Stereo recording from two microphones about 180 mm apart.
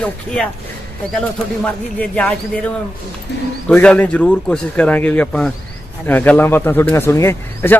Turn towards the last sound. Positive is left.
turn(degrees=15)  # may be behind; listen again after turning